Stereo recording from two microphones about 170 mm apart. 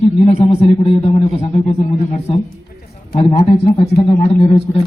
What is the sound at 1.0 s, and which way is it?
A man's voice, 35° left (ahead or behind).